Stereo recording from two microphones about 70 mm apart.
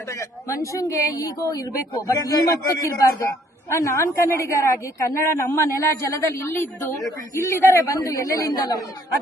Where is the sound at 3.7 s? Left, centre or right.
Left.